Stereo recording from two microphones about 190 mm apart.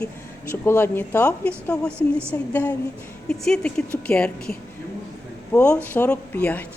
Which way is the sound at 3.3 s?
5° left (ahead or behind).